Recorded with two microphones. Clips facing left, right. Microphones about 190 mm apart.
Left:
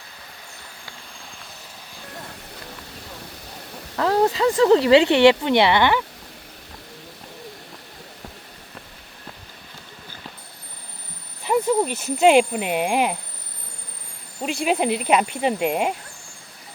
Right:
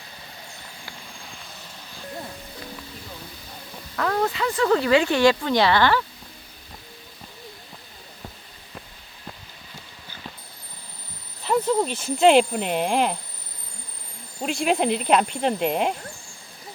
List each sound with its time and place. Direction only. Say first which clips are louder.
3.9 s speech: left 5 dB; 30° left (ahead or behind)
11.4 s speech: left 2 dB; 10° left (ahead or behind)
14.4 s speech: even; 5° left (ahead or behind)